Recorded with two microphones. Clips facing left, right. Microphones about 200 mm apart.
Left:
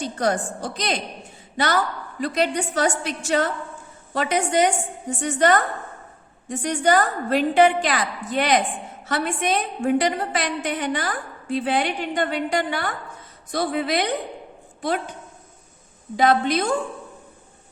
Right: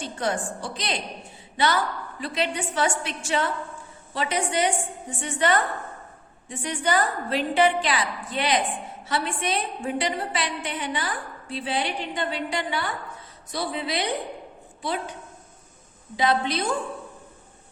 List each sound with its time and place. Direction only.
0.0 s a woman's voice: 40° left (ahead or behind)
16.1 s a woman's voice: 50° left (ahead or behind)